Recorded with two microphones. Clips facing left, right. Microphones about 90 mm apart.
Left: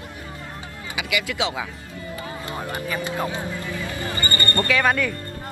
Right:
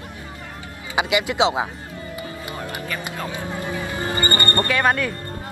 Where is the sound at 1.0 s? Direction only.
25° right (ahead or behind).